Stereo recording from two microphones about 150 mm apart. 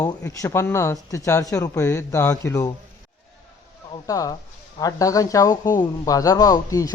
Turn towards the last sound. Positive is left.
turn(degrees=25)  # may be behind; listen again after turning